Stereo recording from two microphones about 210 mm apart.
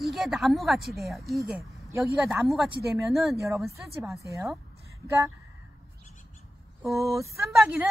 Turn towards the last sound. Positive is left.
turn(degrees=-10)  # may be behind; listen again after turning